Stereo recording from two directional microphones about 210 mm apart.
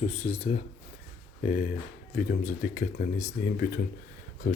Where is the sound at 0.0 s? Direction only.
30° left (ahead or behind).